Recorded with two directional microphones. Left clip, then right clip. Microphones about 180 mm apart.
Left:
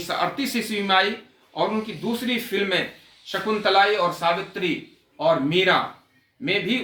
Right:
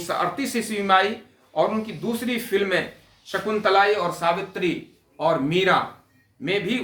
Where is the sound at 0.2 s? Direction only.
15° right (ahead or behind).